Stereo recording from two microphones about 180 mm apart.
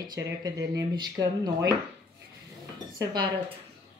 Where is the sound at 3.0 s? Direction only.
25° right (ahead or behind).